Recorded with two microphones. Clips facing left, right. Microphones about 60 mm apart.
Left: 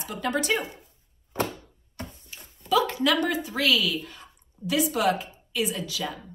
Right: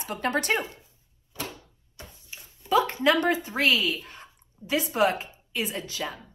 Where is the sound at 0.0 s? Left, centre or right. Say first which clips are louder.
Even; right.